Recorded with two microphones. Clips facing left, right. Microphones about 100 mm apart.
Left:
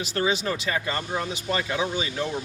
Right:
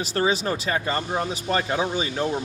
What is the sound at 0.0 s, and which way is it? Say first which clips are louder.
Speech: right 2 dB; 35° right (ahead or behind).